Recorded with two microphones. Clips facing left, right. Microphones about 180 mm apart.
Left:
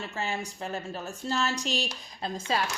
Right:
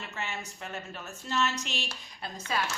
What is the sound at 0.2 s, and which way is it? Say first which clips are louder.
A woman's voice: left 5 dB; 35° left (ahead or behind).